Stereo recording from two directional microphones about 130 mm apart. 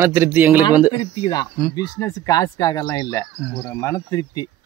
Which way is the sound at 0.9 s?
35° left (ahead or behind).